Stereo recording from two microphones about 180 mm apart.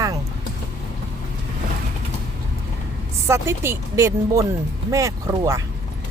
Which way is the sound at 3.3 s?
15° right (ahead or behind).